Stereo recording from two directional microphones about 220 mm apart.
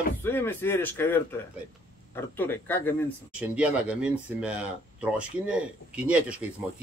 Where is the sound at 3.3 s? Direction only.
5° right (ahead or behind).